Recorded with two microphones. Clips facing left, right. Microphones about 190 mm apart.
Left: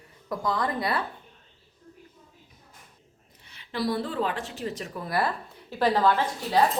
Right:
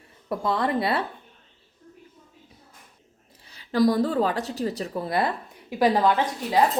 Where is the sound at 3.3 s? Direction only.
35° right (ahead or behind); by 6.2 s 15° right (ahead or behind).